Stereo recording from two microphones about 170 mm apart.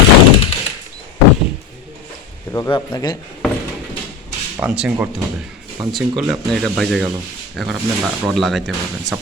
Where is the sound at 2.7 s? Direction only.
25° left (ahead or behind).